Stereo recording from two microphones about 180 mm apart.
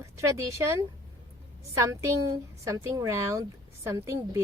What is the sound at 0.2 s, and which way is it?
A woman's voice, 15° right (ahead or behind).